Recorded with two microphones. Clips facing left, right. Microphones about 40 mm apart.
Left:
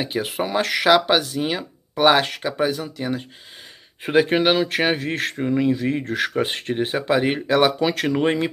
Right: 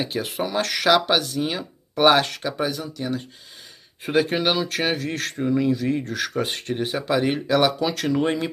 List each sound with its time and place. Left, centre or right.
0.0 s speech: centre
2.2 s speech: centre